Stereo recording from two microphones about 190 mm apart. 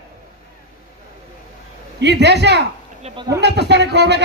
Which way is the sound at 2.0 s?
65° right (ahead or behind).